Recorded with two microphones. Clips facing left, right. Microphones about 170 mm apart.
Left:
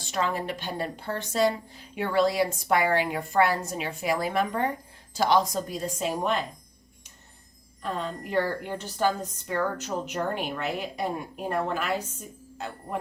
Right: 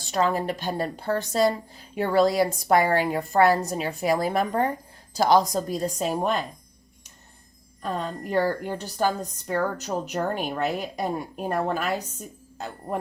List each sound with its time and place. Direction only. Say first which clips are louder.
0.1 s a woman's voice: right 5 dB; 40° right (ahead or behind)
7.8 s a woman's voice: right 2 dB; 40° right (ahead or behind)